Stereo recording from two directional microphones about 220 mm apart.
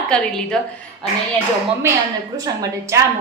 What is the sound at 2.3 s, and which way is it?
Speech, 15° right (ahead or behind).